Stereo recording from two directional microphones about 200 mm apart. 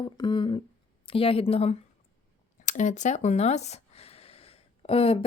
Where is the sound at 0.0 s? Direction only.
25° left (ahead or behind).